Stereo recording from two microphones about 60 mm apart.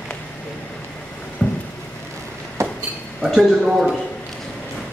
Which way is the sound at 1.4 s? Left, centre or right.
Centre.